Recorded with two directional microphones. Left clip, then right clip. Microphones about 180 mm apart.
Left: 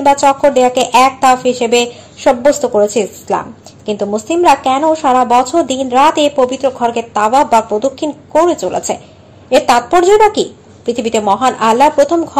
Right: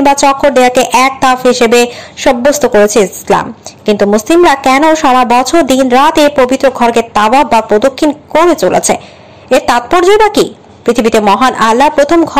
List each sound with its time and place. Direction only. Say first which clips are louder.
0.0 s speech: right 2 dB; 25° right (ahead or behind)